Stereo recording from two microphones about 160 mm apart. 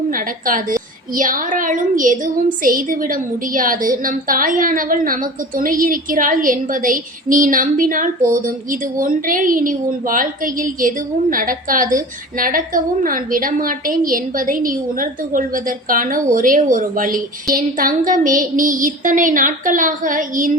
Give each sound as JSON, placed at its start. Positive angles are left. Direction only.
{"t": 0.1, "sound": "speech", "side_deg": -60}